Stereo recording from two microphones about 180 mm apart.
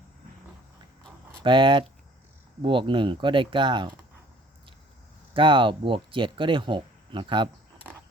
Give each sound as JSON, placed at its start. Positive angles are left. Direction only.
{"t": 1.4, "sound": "speech", "side_deg": -25}
{"t": 5.3, "sound": "speech", "side_deg": -30}